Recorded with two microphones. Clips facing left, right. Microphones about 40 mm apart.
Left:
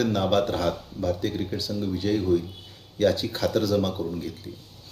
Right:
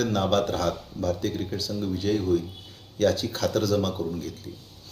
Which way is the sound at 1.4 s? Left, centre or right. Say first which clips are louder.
Left 1 dB; centre.